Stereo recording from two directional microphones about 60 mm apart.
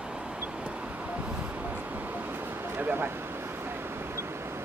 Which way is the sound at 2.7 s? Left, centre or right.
Right.